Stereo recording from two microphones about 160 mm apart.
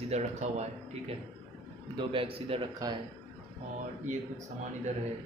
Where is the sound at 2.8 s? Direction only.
25° right (ahead or behind).